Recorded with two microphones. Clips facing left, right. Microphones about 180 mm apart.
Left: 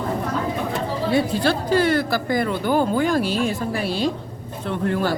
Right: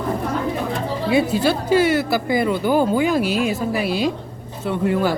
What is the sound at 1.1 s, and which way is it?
Speech, 5° right (ahead or behind).